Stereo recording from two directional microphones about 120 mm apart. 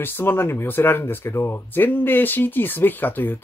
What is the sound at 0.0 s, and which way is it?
Speech, 20° left (ahead or behind).